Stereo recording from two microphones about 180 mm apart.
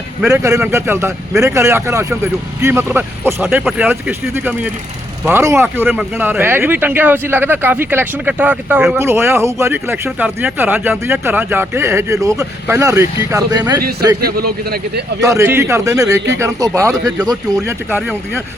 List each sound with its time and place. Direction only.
0.4 s speech: 15° right (ahead or behind)
14.2 s speech: 60° right (ahead or behind)
15.2 s speech: 15° right (ahead or behind)